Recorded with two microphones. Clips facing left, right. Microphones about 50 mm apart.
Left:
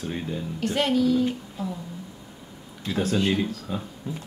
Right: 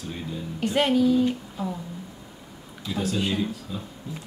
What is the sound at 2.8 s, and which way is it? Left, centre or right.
Speech, left.